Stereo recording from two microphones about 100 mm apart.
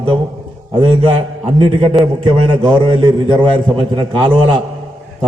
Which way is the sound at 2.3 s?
45° right (ahead or behind).